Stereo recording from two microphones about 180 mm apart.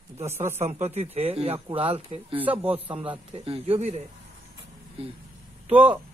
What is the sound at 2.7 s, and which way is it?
A man's voice, 30° right (ahead or behind).